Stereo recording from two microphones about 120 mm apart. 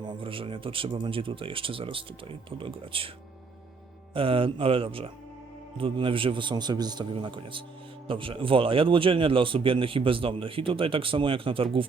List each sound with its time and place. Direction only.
0.2 s a man's voice: 50° right (ahead or behind)
4.1 s a man's voice: 50° right (ahead or behind)